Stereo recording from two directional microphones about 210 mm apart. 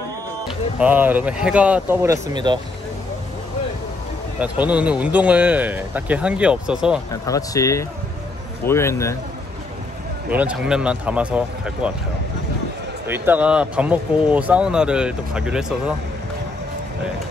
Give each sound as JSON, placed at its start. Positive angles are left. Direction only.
{"t": 0.5, "sound": "speech", "side_deg": -5}
{"t": 4.4, "sound": "speech", "side_deg": -5}
{"t": 7.2, "sound": "speech", "side_deg": 15}
{"t": 10.3, "sound": "speech", "side_deg": -5}
{"t": 13.0, "sound": "speech", "side_deg": -10}